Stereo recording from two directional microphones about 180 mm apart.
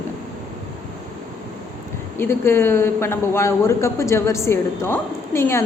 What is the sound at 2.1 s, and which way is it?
A man's voice, 15° left (ahead or behind).